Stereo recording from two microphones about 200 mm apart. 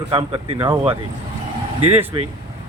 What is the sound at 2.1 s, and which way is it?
Speech, 25° right (ahead or behind).